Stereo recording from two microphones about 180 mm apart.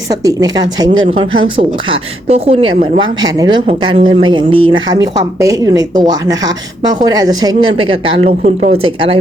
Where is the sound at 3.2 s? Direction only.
20° right (ahead or behind).